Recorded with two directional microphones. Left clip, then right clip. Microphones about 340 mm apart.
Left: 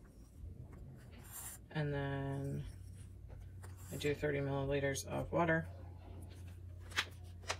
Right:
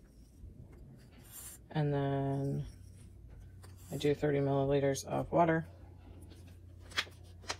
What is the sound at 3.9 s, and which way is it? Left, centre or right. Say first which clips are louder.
Speech: right 6 dB; centre.